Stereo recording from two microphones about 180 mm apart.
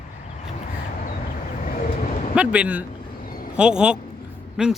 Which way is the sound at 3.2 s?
55° left (ahead or behind).